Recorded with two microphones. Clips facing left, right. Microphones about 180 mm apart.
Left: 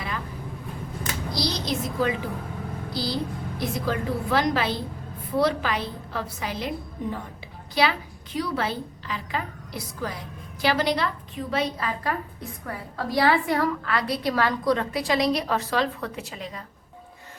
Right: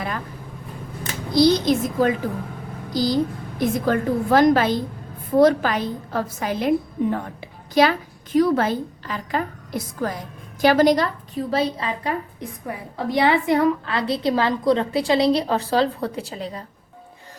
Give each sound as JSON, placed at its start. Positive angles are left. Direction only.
{"t": 1.3, "sound": "a woman's voice", "side_deg": -55}